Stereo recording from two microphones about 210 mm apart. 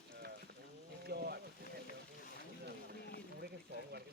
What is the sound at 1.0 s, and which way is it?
Boat, 50° right (ahead or behind).